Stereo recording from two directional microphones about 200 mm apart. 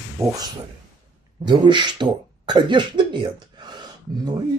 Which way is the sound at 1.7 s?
25° right (ahead or behind).